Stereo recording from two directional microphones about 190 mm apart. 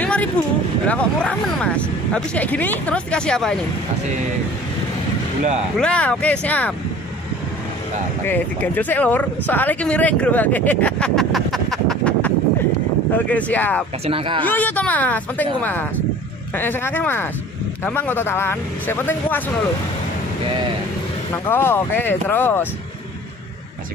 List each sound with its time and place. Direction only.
0.0 s a sound: 10° left (ahead or behind)
0.8 s speech: 5° left (ahead or behind)
5.4 s speech: 40° right (ahead or behind)
5.8 s speech: 5° left (ahead or behind)
8.3 s speech: 10° left (ahead or behind)
14.0 s speech: 30° right (ahead or behind)
14.4 s speech: 10° left (ahead or behind)
20.4 s speech: 25° right (ahead or behind)
21.3 s speech: 10° left (ahead or behind)